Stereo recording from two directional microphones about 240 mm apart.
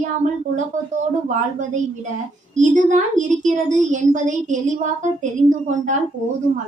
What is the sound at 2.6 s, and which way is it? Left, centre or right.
A woman's voice, right.